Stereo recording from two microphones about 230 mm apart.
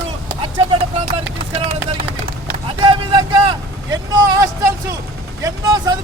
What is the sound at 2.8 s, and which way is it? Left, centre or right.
Vehicle, centre.